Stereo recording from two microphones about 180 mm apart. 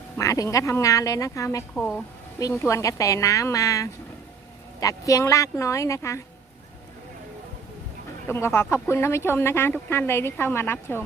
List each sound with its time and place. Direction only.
0.2 s speech: 20° left (ahead or behind)
1.7 s speech: 5° left (ahead or behind)
8.3 s speech: 15° left (ahead or behind)